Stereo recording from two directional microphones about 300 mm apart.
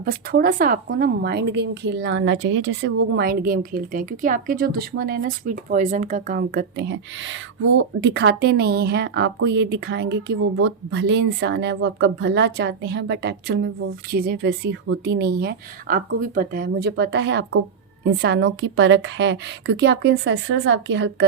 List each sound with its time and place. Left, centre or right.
0.0 s speech: right